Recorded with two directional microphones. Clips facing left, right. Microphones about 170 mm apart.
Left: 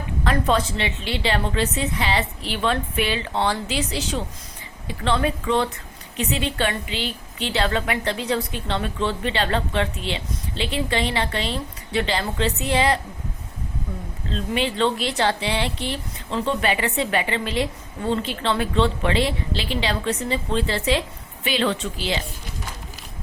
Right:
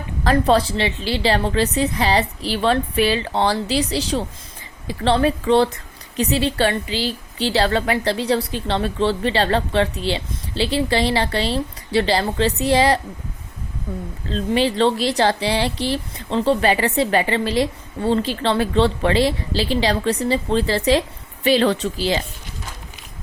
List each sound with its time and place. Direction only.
0.3 s a woman's voice: 35° right (ahead or behind)
14.3 s a woman's voice: 35° right (ahead or behind)